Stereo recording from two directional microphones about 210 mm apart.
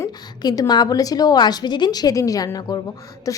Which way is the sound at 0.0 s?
15° left (ahead or behind).